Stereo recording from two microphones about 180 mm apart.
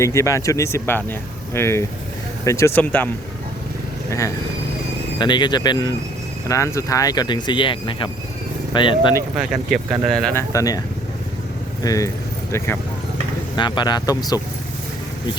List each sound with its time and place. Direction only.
0.0 s speech: 15° left (ahead or behind)
5.2 s speech: 25° left (ahead or behind)
9.4 s speech: centre (ahead or behind)
10.3 s speech: 20° left (ahead or behind)